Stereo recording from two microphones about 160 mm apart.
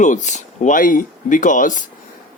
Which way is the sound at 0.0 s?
50° left (ahead or behind).